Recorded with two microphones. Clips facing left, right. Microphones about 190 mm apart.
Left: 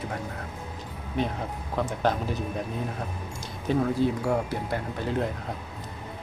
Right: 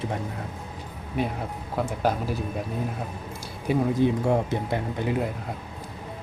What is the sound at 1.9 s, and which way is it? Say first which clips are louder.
Speech: right 1 dB; 10° right (ahead or behind).